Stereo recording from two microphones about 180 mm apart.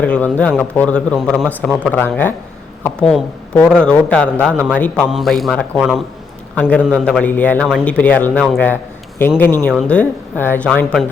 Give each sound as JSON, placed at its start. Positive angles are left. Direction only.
{"t": 0.0, "sound": "a man's voice", "side_deg": 10}
{"t": 8.3, "sound": "a man's voice", "side_deg": 0}
{"t": 8.6, "sound": "a sound", "side_deg": 10}
{"t": 9.8, "sound": "speech", "side_deg": 5}